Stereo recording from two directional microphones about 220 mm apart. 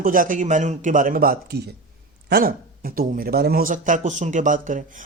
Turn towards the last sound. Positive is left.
turn(degrees=-35)  # may be behind; listen again after turning